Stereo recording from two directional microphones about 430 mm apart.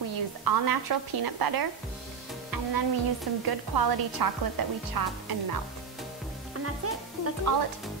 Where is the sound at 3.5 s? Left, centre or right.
Right.